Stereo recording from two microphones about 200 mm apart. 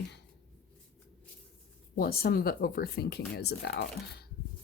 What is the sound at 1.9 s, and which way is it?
Speech, 50° left (ahead or behind).